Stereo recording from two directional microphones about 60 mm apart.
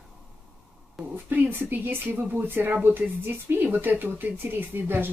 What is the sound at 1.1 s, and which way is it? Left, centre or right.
Speech, right.